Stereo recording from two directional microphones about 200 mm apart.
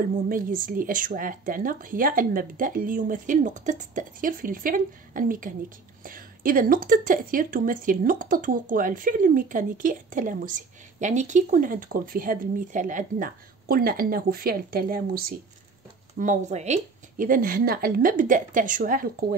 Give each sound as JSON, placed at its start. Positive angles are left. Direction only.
{"t": 0.3, "sound": "speech", "side_deg": -40}